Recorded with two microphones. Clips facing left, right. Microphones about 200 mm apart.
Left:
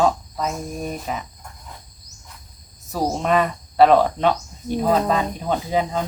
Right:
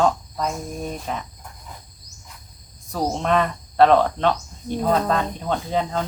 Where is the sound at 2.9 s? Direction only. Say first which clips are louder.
Left 1 dB; 5° left (ahead or behind).